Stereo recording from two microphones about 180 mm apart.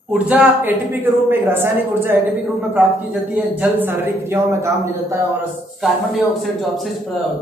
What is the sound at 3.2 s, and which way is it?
A man's voice, 10° right (ahead or behind).